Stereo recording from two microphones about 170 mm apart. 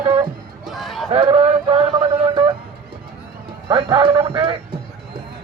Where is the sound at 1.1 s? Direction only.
30° right (ahead or behind).